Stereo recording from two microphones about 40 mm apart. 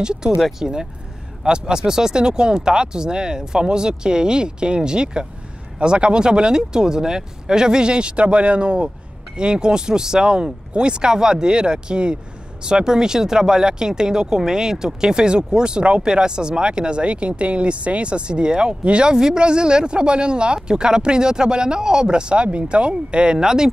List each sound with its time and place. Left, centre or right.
0.0 s speech: right